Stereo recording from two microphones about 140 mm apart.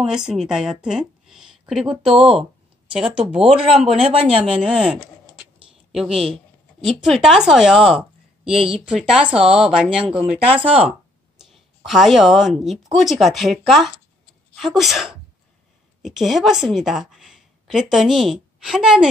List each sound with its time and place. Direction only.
0.0 s a woman's voice: 5° right (ahead or behind)
10.5 s speech: 40° right (ahead or behind)
10.8 s a sound: 5° right (ahead or behind)
12.9 s a woman's voice: centre (ahead or behind)